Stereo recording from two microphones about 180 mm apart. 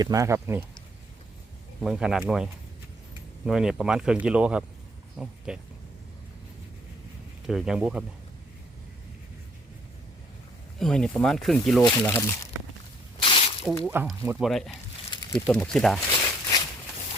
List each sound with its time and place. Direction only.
0.0 s speech: 20° right (ahead or behind)
1.8 s speech: 5° right (ahead or behind)
7.4 s speech: 5° right (ahead or behind)
10.8 s speech: 5° left (ahead or behind)
11.9 s speech: 15° left (ahead or behind)
13.2 s drip: 30° left (ahead or behind)
13.8 s speech: 5° right (ahead or behind)
14.3 s speech: centre (ahead or behind)
15.1 s a sound: 25° left (ahead or behind)
15.4 s speech: 5° left (ahead or behind)
16.1 s a sound: 25° left (ahead or behind)